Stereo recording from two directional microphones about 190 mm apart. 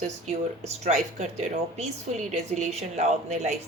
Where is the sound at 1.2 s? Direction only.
35° right (ahead or behind).